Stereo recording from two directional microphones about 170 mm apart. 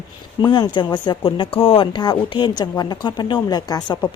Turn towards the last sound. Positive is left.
turn(degrees=20)  # may be behind; listen again after turning